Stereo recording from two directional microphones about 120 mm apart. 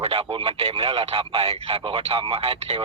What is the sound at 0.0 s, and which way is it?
Speech, 50° right (ahead or behind).